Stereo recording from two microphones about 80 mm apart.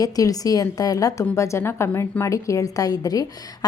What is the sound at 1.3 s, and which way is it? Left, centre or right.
A woman's voice, left.